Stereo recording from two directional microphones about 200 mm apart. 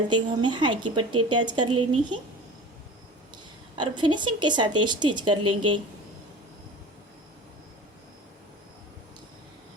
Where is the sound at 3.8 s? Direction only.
25° right (ahead or behind).